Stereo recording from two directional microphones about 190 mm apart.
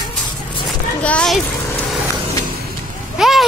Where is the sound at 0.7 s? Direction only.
5° left (ahead or behind).